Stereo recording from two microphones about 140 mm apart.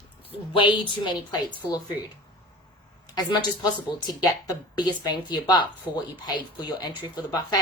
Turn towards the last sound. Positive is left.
turn(degrees=30)  # may be behind; listen again after turning